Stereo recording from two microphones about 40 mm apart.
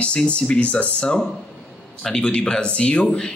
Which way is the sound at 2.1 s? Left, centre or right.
Left.